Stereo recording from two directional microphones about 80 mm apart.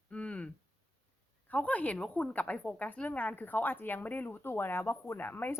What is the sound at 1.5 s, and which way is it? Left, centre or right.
Speech, centre.